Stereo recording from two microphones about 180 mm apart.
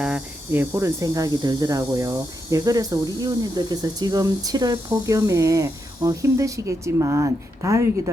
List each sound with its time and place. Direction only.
0.0 s speech: 10° right (ahead or behind)